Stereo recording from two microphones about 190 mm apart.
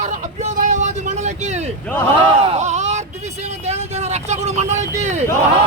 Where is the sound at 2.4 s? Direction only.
35° right (ahead or behind).